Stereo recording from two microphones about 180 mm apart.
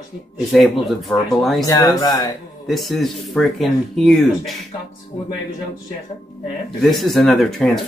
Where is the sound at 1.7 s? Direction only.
20° left (ahead or behind).